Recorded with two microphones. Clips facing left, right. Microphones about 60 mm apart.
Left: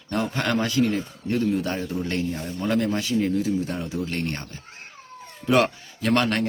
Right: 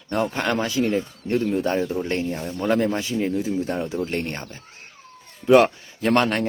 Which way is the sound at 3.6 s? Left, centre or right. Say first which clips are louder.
Right 3 dB; right.